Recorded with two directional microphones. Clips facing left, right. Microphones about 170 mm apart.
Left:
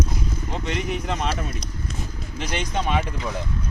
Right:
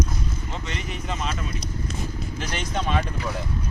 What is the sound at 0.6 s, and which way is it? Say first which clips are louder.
Speech: left 9 dB; 60° left (ahead or behind).